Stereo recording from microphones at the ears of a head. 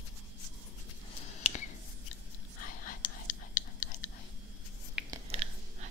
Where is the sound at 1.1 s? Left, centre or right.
Left.